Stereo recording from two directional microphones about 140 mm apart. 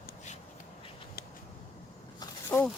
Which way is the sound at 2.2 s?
20° left (ahead or behind).